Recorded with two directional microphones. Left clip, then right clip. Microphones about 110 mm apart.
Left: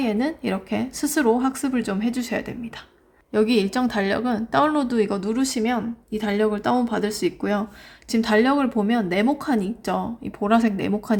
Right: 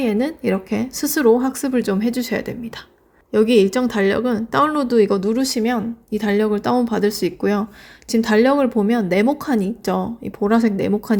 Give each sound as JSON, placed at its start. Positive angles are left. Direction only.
{"t": 0.0, "sound": "a woman's voice", "side_deg": -30}
{"t": 3.3, "sound": "speech", "side_deg": -20}